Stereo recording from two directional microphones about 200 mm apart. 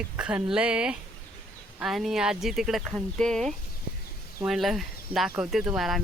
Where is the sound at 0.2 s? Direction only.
5° right (ahead or behind).